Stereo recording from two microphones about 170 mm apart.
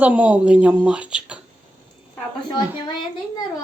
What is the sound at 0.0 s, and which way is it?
Speech, 10° right (ahead or behind).